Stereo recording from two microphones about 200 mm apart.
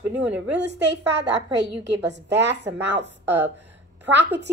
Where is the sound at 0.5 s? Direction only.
60° right (ahead or behind).